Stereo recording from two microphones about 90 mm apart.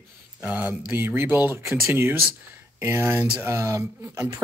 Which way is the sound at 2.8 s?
25° right (ahead or behind).